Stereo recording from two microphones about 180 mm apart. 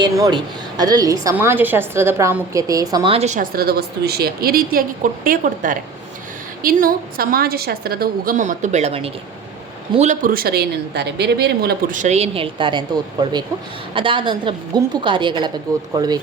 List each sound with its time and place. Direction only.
0.0 s a woman's voice: 25° right (ahead or behind)